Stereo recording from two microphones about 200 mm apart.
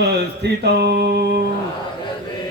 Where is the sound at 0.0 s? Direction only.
55° right (ahead or behind).